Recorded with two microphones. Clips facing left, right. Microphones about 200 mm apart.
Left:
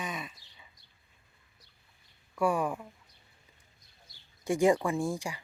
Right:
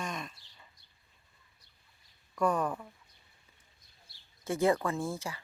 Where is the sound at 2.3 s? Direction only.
10° left (ahead or behind).